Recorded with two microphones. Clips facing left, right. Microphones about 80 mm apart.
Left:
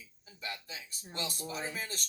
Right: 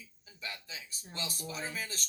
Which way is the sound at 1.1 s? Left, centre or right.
Left.